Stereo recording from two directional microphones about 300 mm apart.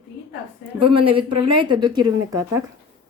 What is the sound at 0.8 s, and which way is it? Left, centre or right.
Speech, centre.